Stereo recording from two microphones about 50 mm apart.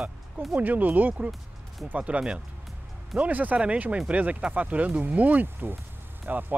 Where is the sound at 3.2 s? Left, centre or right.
Right.